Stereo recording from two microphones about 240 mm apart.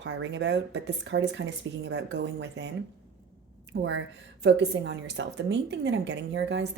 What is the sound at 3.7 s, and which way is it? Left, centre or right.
A woman's voice, right.